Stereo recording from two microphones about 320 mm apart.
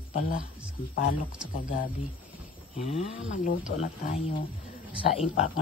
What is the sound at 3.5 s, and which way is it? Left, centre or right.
Speech, left.